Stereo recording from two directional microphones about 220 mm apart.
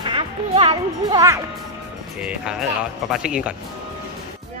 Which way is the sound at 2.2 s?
5° right (ahead or behind).